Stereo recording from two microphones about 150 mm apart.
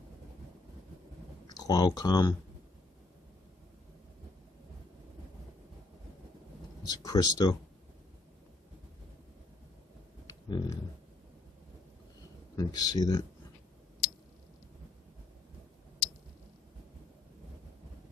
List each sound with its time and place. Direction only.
1.6 s speech: 25° left (ahead or behind)
6.8 s speech: 25° left (ahead or behind)
10.2 s a sound: 25° left (ahead or behind)
12.5 s speech: 25° left (ahead or behind)